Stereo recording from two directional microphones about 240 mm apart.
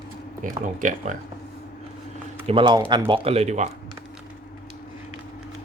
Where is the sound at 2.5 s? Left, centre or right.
Centre.